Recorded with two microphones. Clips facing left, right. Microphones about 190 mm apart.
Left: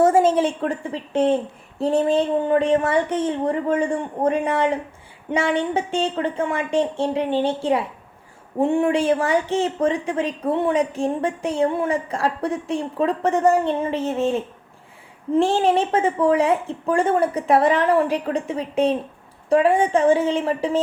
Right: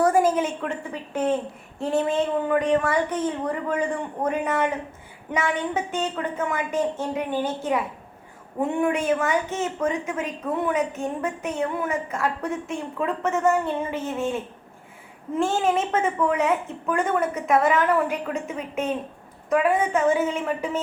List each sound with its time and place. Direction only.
0.0 s a woman's voice: 25° left (ahead or behind)